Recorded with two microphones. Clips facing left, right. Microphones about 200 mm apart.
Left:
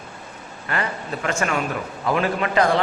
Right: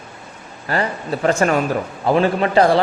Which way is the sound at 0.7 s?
35° right (ahead or behind).